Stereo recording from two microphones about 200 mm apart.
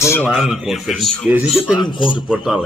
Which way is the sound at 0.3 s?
Centre (ahead or behind).